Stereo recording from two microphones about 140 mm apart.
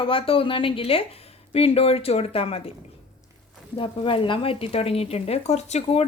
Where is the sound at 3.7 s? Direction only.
35° left (ahead or behind).